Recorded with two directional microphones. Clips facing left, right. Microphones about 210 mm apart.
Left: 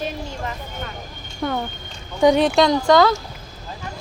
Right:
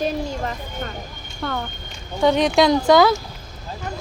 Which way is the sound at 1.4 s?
20° left (ahead or behind).